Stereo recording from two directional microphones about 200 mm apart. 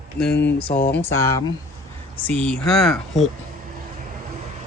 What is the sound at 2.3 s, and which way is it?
Speech, 5° left (ahead or behind).